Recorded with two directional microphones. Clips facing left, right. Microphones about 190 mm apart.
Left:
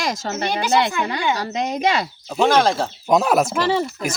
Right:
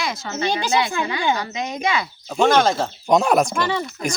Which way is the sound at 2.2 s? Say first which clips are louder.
Even; centre (ahead or behind).